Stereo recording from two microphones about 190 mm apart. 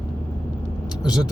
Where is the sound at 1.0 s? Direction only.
20° left (ahead or behind).